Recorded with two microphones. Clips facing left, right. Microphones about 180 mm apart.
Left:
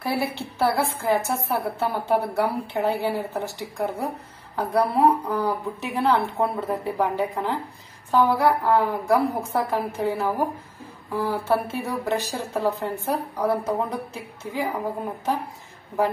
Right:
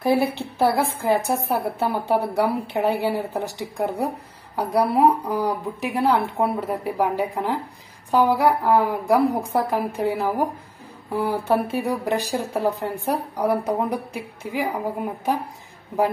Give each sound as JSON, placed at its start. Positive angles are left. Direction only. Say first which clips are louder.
{"t": 0.0, "sound": "a woman's voice", "louder": "right 6 dB", "side_deg": -20}